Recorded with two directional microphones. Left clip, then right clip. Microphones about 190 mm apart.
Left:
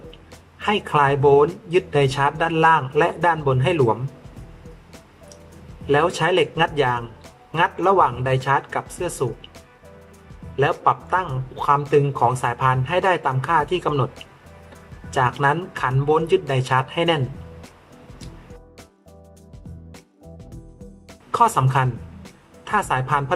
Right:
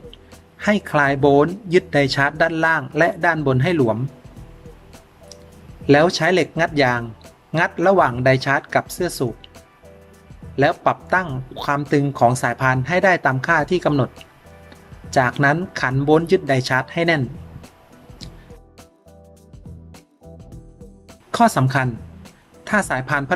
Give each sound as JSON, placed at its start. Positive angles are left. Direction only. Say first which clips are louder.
{"t": 0.6, "sound": "speech", "louder": "right 1 dB", "side_deg": -30}
{"t": 5.9, "sound": "speech", "louder": "right 3 dB", "side_deg": -30}
{"t": 10.6, "sound": "speech", "louder": "right 1 dB", "side_deg": -35}
{"t": 15.1, "sound": "speech", "louder": "right 2 dB", "side_deg": -35}
{"t": 21.3, "sound": "speech", "louder": "right 1 dB", "side_deg": -25}